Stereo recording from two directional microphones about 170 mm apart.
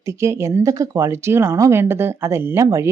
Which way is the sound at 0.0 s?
15° right (ahead or behind).